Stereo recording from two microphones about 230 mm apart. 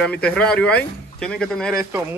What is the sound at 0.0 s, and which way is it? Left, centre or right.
Speech, centre.